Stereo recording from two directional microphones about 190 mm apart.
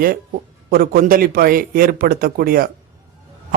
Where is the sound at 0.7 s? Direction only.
50° right (ahead or behind).